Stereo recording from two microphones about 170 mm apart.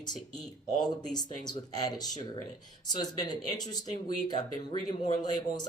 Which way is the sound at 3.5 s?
25° left (ahead or behind).